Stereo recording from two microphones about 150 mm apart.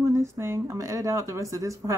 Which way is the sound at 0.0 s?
20° right (ahead or behind).